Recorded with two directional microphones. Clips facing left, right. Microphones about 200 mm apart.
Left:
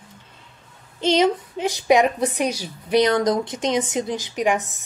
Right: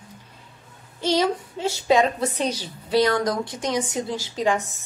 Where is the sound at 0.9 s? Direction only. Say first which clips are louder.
Left 3 dB; 20° left (ahead or behind).